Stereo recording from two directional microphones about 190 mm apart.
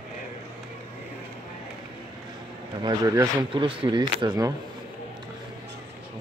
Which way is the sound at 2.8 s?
20° right (ahead or behind).